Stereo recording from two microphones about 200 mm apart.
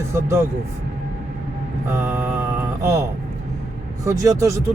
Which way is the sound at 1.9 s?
10° right (ahead or behind).